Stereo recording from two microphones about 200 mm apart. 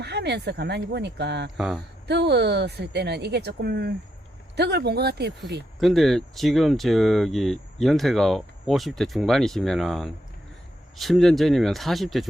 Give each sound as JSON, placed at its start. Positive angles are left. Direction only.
{"t": 0.0, "sound": "a woman's voice", "side_deg": -55}
{"t": 1.5, "sound": "speech", "side_deg": 0}
{"t": 2.0, "sound": "a woman's voice", "side_deg": -55}
{"t": 5.8, "sound": "speech", "side_deg": 0}